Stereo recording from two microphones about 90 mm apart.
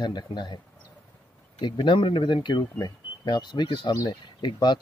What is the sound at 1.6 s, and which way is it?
Speech, 65° left (ahead or behind).